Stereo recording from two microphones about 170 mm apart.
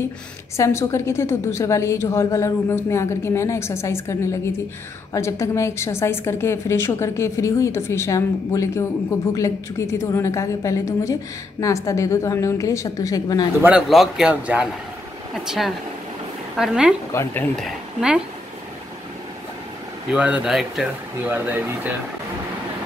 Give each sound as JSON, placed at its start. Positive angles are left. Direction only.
{"t": 0.6, "sound": "a woman's voice", "side_deg": 15}
{"t": 13.6, "sound": "a man's voice", "side_deg": -5}
{"t": 17.1, "sound": "a woman's voice", "side_deg": 15}
{"t": 17.6, "sound": "speech", "side_deg": -5}
{"t": 20.1, "sound": "a man's voice", "side_deg": -5}